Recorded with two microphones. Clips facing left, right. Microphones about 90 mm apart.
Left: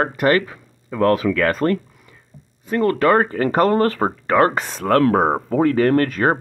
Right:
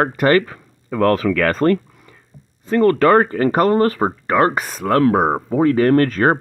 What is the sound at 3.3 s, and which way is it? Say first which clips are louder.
Speech: right 1 dB; 30° right (ahead or behind).